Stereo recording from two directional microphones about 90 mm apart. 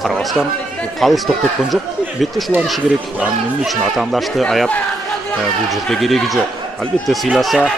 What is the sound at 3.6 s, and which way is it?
Speech, centre (ahead or behind).